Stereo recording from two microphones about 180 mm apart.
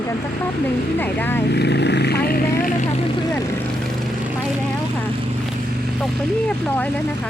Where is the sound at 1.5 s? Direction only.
70° left (ahead or behind).